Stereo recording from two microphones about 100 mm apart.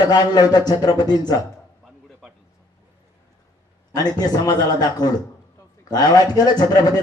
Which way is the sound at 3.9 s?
40° left (ahead or behind).